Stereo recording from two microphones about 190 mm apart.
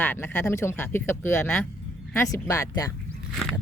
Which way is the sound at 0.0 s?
10° left (ahead or behind).